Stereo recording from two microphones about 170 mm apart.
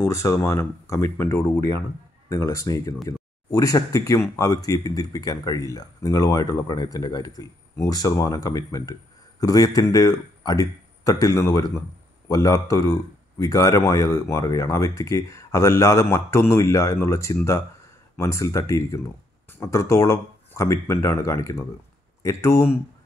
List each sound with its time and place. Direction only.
0.0 s speech: 15° left (ahead or behind)